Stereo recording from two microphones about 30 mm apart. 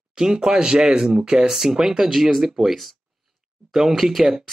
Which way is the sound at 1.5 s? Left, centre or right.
Centre.